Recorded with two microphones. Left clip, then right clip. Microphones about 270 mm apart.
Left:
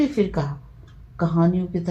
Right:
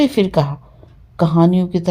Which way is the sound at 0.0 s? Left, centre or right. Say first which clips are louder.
Right 7 dB; right.